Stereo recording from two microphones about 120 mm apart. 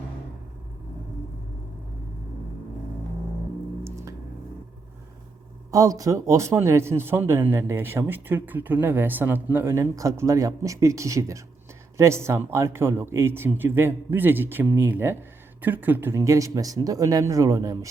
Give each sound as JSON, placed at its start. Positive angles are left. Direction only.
{"t": 5.7, "sound": "speech", "side_deg": -30}